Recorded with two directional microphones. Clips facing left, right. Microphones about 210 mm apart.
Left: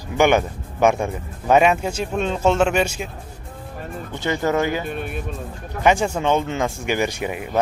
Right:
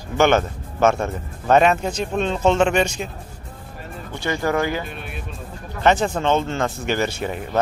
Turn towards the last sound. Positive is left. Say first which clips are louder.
# even
turn(degrees=10)  # may be behind; listen again after turning